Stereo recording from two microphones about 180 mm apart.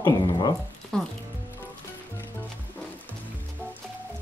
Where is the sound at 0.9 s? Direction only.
5° left (ahead or behind).